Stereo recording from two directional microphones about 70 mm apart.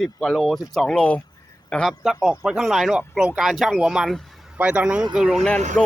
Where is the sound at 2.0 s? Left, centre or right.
Centre.